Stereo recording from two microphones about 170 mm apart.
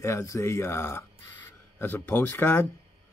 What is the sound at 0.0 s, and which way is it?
Speech, 15° left (ahead or behind).